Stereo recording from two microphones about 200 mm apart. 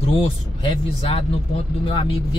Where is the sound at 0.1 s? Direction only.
25° left (ahead or behind).